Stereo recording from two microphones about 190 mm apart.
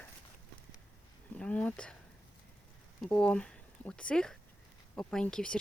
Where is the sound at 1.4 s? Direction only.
5° left (ahead or behind).